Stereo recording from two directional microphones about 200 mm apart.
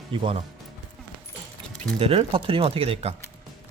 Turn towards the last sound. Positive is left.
turn(degrees=-30)  # may be behind; listen again after turning